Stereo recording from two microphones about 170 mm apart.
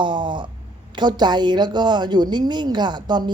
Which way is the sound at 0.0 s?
30° right (ahead or behind).